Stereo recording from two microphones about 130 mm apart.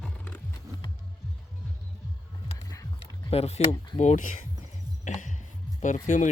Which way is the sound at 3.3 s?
50° left (ahead or behind).